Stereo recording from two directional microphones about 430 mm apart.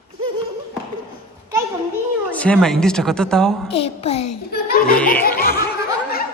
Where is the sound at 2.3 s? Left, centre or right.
Centre.